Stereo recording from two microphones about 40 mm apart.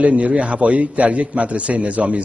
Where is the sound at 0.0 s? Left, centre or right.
Right.